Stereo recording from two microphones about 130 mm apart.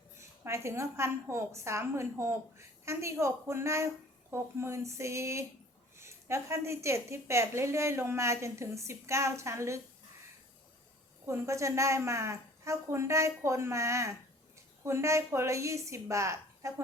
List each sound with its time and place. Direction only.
0.2 s a woman's voice: 20° right (ahead or behind)
11.3 s a woman's voice: 25° right (ahead or behind)